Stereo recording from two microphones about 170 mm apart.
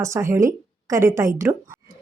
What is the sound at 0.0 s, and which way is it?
A woman's voice, 15° right (ahead or behind).